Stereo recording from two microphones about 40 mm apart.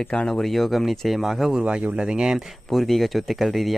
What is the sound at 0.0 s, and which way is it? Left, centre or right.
Speech, left.